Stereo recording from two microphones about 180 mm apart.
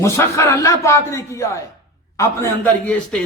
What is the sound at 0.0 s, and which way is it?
Speech, 15° left (ahead or behind).